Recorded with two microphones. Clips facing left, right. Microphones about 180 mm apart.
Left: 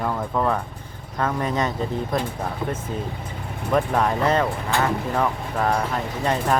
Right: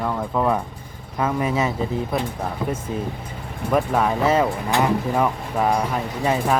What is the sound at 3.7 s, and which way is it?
Speech, 5° right (ahead or behind).